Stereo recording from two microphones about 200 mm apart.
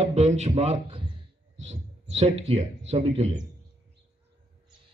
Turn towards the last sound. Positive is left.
turn(degrees=-30)  # may be behind; listen again after turning